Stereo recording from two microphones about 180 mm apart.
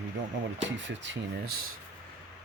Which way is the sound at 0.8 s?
80° right.